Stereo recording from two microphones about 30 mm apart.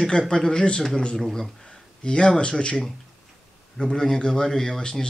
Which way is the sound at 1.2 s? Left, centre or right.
Centre.